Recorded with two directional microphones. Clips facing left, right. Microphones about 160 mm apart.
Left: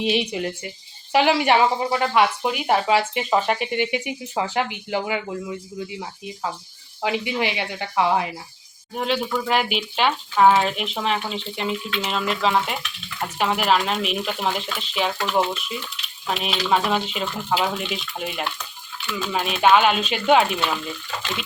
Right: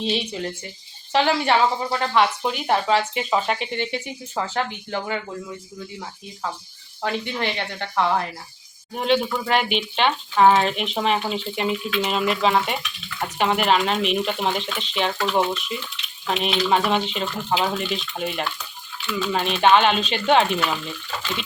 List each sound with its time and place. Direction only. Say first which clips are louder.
0.0 s speech: left 3 dB; 10° left (ahead or behind)
7.0 s speech: left 2 dB; 10° left (ahead or behind)
16.2 s speech: right 3 dB; 5° left (ahead or behind)